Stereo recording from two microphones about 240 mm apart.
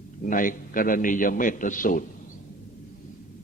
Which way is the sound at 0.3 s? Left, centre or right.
Left.